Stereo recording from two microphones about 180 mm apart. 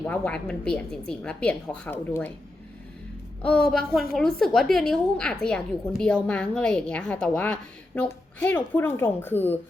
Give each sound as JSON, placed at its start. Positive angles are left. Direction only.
{"t": 0.1, "sound": "a woman's voice", "side_deg": 5}
{"t": 3.4, "sound": "a woman's voice", "side_deg": 5}